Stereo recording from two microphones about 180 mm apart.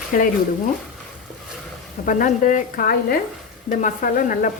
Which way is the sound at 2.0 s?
50° left (ahead or behind).